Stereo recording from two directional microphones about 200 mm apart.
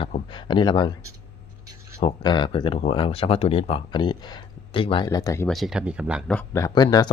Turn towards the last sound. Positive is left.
turn(degrees=20)  # may be behind; listen again after turning